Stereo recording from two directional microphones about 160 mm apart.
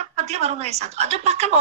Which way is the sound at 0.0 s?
45° right (ahead or behind).